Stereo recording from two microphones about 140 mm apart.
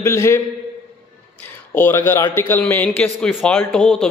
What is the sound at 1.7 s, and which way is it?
A man's voice, 15° left (ahead or behind).